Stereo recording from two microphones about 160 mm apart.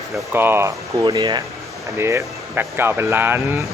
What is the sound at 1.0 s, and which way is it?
Speech, 25° right (ahead or behind).